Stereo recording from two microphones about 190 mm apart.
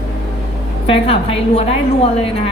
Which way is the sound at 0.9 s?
30° left (ahead or behind).